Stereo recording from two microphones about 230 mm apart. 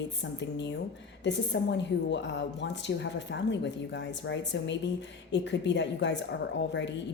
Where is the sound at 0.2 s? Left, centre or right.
Left.